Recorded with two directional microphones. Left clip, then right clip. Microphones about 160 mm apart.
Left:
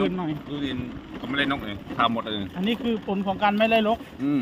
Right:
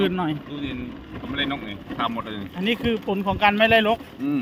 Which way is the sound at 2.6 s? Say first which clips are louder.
Right 5 dB; 25° right (ahead or behind).